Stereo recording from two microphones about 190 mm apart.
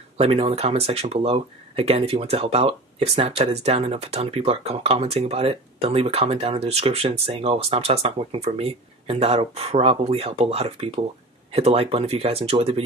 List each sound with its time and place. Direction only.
0.2 s speech: 30° right (ahead or behind)